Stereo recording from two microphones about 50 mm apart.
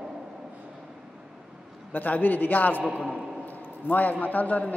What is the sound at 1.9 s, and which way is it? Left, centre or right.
A man's voice, left.